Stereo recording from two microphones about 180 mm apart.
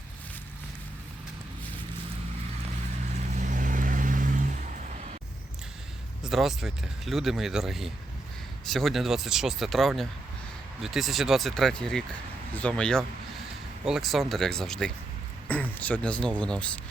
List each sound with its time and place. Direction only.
3.3 s vehicle: 45° right (ahead or behind)
6.2 s speech: centre (ahead or behind)